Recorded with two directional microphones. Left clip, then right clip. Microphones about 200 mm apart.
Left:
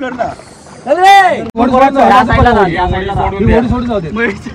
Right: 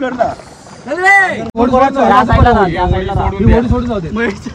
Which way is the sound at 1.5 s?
15° right (ahead or behind).